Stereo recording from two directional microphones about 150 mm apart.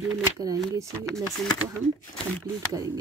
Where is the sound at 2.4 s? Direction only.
20° right (ahead or behind).